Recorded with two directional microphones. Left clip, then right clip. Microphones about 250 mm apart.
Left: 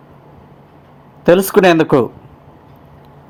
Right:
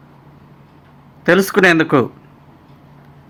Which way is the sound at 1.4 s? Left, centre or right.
Centre.